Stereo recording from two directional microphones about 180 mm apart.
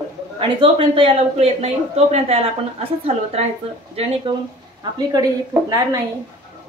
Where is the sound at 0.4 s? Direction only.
30° right (ahead or behind).